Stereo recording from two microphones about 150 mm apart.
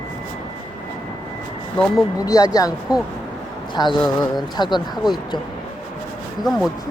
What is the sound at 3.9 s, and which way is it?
Speech, 30° left (ahead or behind).